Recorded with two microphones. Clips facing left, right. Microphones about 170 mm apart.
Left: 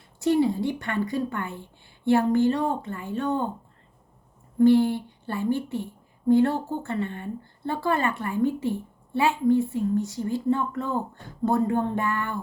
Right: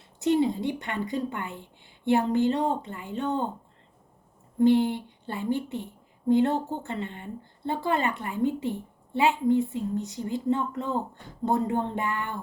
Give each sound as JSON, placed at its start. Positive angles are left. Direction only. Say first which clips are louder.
{"t": 0.2, "sound": "a woman's voice", "louder": "left 2 dB", "side_deg": -20}
{"t": 4.6, "sound": "a woman's voice", "louder": "left 3 dB", "side_deg": -20}